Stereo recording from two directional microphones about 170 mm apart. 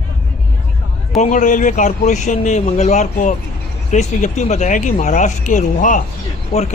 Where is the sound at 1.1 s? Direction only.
45° left (ahead or behind).